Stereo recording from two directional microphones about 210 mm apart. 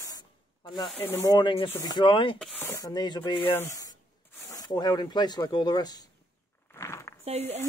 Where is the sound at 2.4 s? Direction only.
10° left (ahead or behind).